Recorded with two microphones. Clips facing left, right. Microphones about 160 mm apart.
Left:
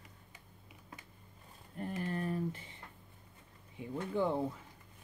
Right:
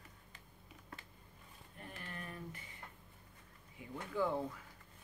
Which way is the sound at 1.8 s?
35° left (ahead or behind).